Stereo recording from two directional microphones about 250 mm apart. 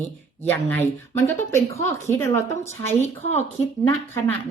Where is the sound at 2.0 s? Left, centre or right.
Centre.